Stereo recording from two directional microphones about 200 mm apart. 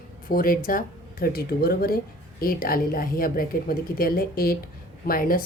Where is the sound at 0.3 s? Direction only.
45° left (ahead or behind).